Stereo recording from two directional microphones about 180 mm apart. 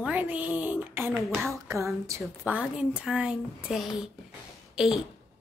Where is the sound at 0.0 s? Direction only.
10° right (ahead or behind).